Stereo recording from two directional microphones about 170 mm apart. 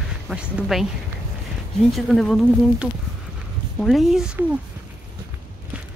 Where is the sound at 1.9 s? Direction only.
Centre (ahead or behind).